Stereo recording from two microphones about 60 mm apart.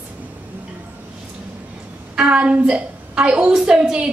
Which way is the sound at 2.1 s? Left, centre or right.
Centre.